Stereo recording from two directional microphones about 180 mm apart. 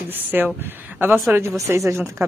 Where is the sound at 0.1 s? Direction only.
10° right (ahead or behind).